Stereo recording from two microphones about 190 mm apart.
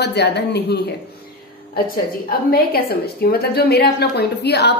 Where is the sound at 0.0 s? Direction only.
60° left (ahead or behind).